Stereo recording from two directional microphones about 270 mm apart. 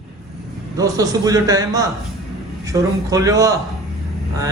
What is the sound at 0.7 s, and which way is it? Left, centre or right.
Speech, centre.